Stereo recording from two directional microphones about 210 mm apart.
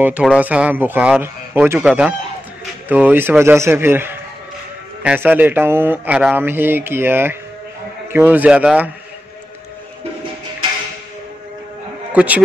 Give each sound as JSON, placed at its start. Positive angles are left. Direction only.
{"t": 0.0, "sound": "speech", "side_deg": -5}
{"t": 12.1, "sound": "speech", "side_deg": -5}